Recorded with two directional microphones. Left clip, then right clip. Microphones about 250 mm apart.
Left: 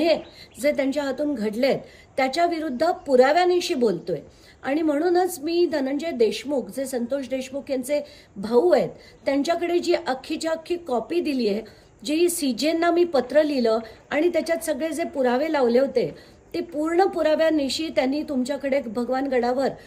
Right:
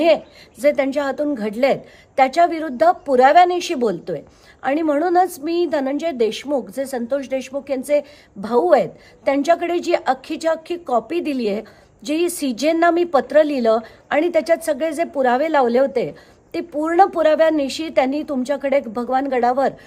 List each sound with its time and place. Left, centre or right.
0.6 s a woman's voice: centre